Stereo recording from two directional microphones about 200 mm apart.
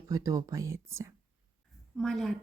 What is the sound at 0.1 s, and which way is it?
Speech, 15° right (ahead or behind).